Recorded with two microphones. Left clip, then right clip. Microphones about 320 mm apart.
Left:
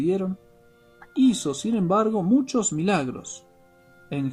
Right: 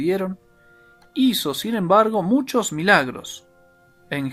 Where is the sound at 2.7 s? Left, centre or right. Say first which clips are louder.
Right 8 dB; centre.